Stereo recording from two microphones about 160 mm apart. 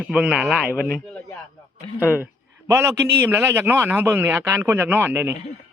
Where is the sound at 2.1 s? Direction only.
15° right (ahead or behind).